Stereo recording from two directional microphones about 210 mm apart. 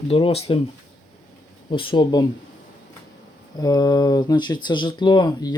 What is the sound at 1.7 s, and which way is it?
Speech, 25° left (ahead or behind).